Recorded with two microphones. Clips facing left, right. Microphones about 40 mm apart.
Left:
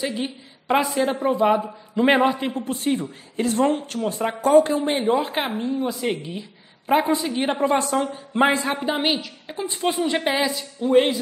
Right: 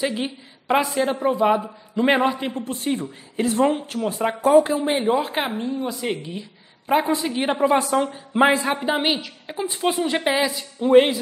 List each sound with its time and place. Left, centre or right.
0.0 s a woman's voice: centre
0.7 s a man's voice: centre
10.8 s speech: centre